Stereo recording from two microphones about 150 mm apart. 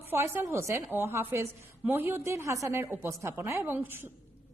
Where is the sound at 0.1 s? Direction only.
15° right (ahead or behind).